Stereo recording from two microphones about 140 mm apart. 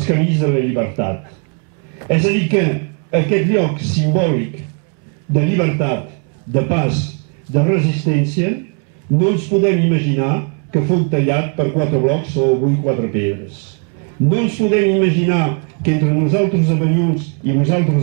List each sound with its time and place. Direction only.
0.0 s a man's voice: 10° right (ahead or behind)
14.3 s a man's voice: 10° right (ahead or behind)